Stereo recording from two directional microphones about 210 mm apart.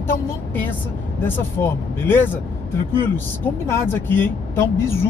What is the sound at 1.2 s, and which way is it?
Speech, 10° left (ahead or behind).